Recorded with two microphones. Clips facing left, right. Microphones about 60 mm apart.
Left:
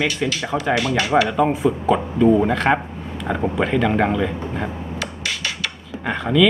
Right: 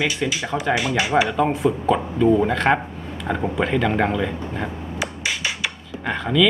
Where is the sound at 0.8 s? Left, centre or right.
Centre.